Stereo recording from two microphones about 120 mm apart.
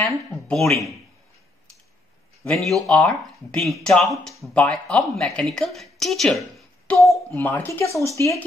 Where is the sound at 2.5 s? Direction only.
Centre (ahead or behind).